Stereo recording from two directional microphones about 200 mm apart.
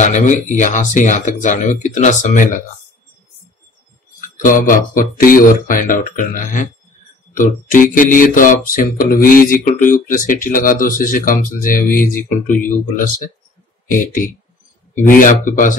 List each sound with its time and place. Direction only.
0.0 s speech: 40° left (ahead or behind)
4.2 s mantra: 40° left (ahead or behind)
13.8 s mantra: 40° left (ahead or behind)